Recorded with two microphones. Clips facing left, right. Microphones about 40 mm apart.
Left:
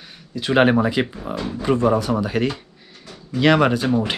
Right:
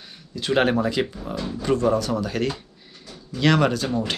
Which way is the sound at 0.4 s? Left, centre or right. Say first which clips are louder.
Left 4 dB; centre.